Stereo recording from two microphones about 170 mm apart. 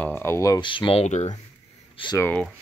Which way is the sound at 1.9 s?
25° left (ahead or behind).